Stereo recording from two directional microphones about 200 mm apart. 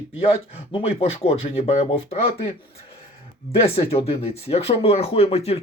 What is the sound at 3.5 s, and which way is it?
Speech, 30° left (ahead or behind).